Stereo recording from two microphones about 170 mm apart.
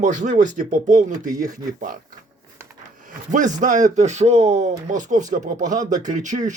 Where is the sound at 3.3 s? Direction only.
45° right (ahead or behind).